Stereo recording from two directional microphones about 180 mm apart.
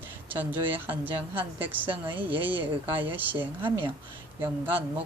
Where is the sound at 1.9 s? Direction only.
30° right (ahead or behind).